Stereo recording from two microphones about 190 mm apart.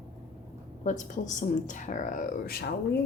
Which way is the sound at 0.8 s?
40° left (ahead or behind).